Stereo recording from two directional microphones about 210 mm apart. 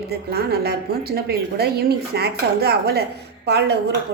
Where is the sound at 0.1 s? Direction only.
50° right (ahead or behind).